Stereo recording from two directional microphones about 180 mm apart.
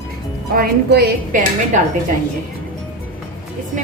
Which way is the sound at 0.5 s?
60° right (ahead or behind).